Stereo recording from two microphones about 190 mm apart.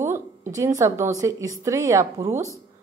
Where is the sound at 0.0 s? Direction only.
15° right (ahead or behind).